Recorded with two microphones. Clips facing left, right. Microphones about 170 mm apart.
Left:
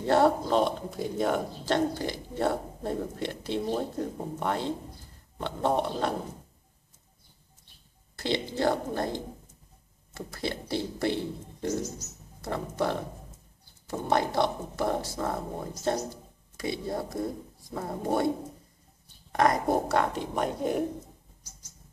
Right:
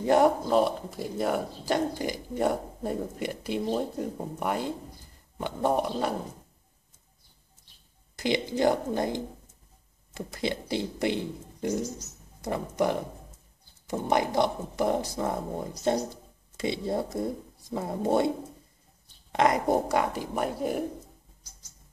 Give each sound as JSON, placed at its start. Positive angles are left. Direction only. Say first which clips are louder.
{"t": 0.0, "sound": "speech", "louder": "right 1 dB", "side_deg": -15}
{"t": 8.2, "sound": "speech", "louder": "right 3 dB", "side_deg": -15}
{"t": 16.5, "sound": "speech", "louder": "right 3 dB", "side_deg": -25}
{"t": 19.3, "sound": "speech", "louder": "right 1 dB", "side_deg": -20}
{"t": 20.0, "sound": "speech", "louder": "even", "side_deg": -10}